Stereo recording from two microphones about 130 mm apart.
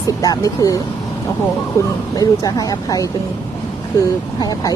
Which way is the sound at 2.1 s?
30° left (ahead or behind).